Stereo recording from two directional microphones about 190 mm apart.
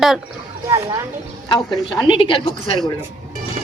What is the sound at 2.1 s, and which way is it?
Speech, 25° left (ahead or behind).